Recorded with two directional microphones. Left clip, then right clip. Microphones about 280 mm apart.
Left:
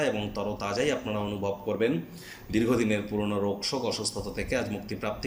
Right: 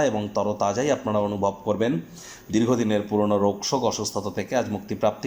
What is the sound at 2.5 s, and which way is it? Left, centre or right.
Speech, right.